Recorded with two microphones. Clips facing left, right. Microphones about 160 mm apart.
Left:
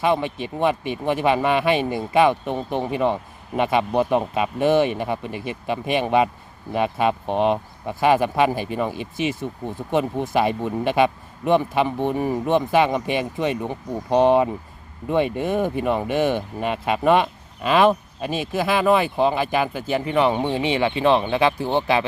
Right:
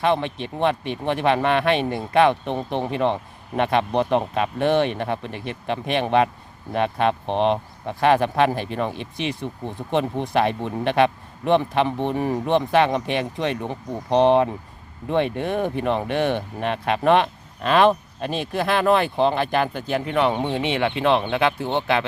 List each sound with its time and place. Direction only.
0.0 s speech: 5° left (ahead or behind)